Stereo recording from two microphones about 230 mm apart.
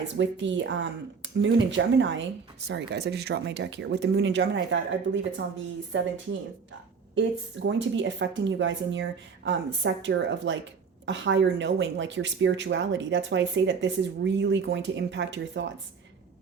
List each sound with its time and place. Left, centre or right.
0.2 s speech: right
7.2 s speech: right